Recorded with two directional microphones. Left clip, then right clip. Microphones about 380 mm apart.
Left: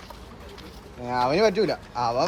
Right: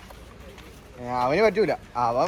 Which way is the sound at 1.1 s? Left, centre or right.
Centre.